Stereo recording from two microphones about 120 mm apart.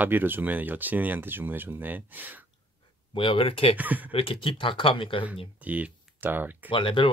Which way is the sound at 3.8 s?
15° right (ahead or behind).